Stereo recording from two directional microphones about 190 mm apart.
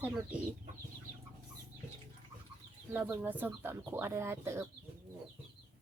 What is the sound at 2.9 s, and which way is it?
Speech, 10° right (ahead or behind).